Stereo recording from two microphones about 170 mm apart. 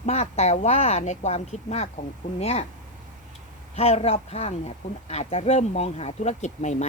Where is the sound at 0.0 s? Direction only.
40° left (ahead or behind).